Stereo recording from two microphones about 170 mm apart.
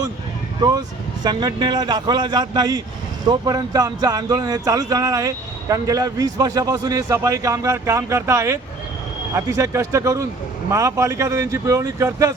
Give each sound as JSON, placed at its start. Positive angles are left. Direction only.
{"t": 0.6, "sound": "speech", "side_deg": -25}